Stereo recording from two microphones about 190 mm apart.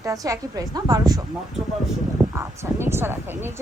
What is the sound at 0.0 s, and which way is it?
A woman's voice, 20° right (ahead or behind).